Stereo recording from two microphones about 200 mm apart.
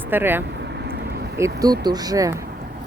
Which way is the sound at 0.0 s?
10° right (ahead or behind).